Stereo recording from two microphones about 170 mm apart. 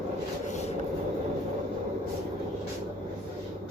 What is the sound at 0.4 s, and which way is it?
Train, 40° left (ahead or behind).